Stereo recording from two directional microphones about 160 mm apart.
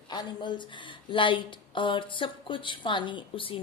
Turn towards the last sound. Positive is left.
turn(degrees=35)  # may be behind; listen again after turning